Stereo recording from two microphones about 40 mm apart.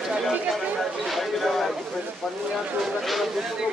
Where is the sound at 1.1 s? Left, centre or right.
Centre.